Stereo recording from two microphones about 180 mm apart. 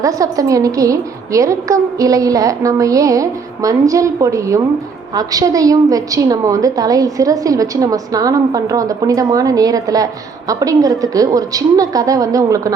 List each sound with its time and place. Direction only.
0.0 s a woman's voice: 20° right (ahead or behind)